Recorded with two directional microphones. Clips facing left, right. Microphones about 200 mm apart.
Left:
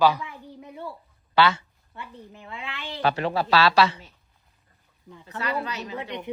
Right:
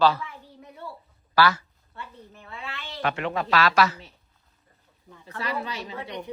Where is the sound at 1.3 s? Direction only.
25° left (ahead or behind).